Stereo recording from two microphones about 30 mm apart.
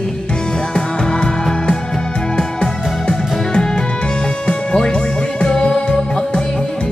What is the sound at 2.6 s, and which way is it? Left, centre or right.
Music, left.